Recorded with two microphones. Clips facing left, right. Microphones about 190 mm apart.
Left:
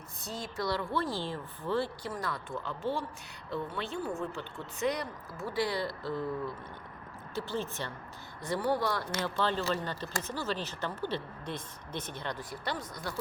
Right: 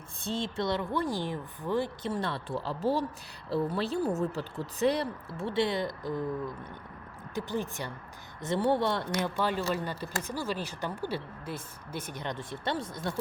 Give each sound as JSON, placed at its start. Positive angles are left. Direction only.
{"t": 0.2, "sound": "speech", "side_deg": -25}
{"t": 2.1, "sound": "speech", "side_deg": -30}
{"t": 7.3, "sound": "speech", "side_deg": -15}